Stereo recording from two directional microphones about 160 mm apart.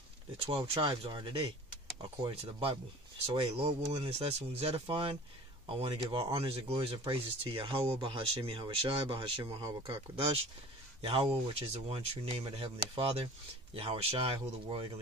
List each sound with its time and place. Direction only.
0.5 s speech: 35° right (ahead or behind)